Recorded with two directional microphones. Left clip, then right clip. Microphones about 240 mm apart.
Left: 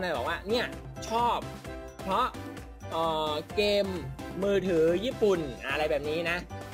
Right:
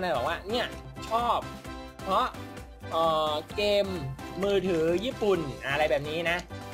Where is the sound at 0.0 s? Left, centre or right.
Left.